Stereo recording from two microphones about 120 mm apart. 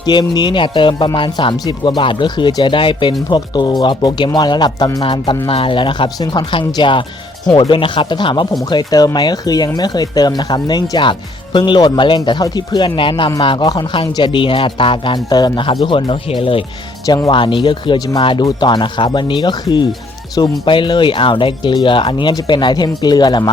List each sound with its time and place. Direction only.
0.0 s speech: 35° left (ahead or behind)
1.5 s speech: 35° left (ahead or behind)